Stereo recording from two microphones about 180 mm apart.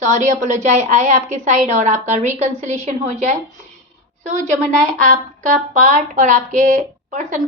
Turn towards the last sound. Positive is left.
turn(degrees=-45)  # may be behind; listen again after turning